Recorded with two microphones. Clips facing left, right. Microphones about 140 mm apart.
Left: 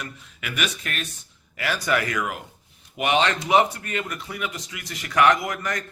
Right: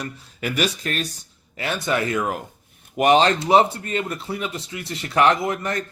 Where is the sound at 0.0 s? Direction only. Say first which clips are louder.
Right 7 dB; 35° right (ahead or behind).